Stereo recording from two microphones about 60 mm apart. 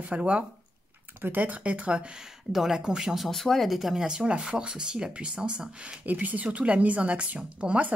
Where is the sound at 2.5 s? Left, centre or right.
Centre.